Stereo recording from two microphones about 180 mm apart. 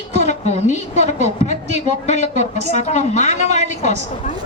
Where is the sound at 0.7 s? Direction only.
40° left (ahead or behind).